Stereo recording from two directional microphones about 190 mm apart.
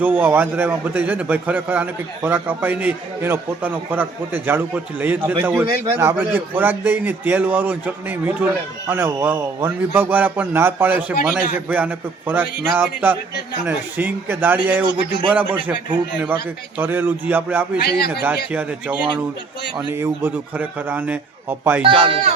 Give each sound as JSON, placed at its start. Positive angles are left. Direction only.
{"t": 0.0, "sound": "a man's voice", "side_deg": -10}
{"t": 17.7, "sound": "a man's voice", "side_deg": 55}
{"t": 19.7, "sound": "a man's voice", "side_deg": -10}
{"t": 21.8, "sound": "speech", "side_deg": -30}